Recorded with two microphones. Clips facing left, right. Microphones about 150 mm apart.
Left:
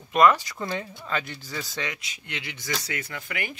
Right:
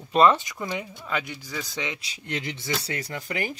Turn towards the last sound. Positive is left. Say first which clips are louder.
# right 4 dB
turn(degrees=-35)  # may be behind; listen again after turning